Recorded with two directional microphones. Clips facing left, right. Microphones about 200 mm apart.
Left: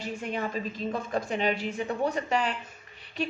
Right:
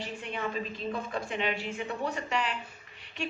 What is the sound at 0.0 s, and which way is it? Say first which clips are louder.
Speech: left 3 dB; 40° left (ahead or behind).